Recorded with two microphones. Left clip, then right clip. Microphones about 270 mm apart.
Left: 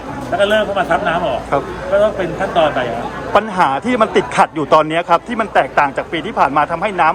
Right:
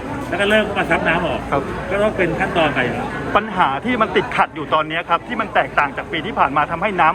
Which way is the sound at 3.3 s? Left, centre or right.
Left.